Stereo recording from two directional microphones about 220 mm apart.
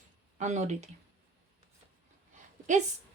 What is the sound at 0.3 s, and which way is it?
Speech, 30° right (ahead or behind).